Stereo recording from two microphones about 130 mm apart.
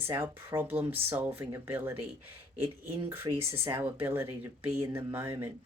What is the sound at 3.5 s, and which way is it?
Speech, 20° right (ahead or behind).